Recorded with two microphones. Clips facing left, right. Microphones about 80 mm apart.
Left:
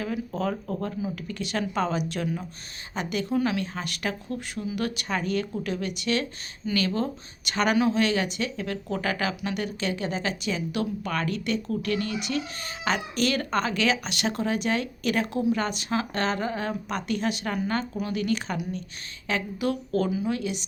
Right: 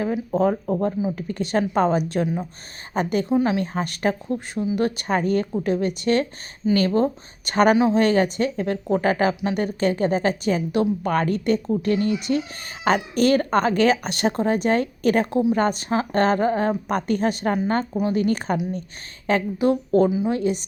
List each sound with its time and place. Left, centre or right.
0.3 s speech: right
2.2 s speech: right
2.9 s speech: right
3.3 s speech: right
3.6 s speech: right
7.8 s speech: right
8.0 s speech: right
20.4 s speech: right